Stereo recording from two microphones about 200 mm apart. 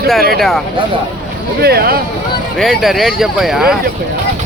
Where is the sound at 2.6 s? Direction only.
Centre (ahead or behind).